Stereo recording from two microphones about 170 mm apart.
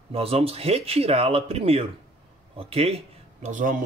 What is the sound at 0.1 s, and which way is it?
Speech, 35° right (ahead or behind).